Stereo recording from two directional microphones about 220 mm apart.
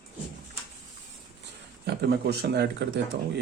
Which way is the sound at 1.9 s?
45° right (ahead or behind).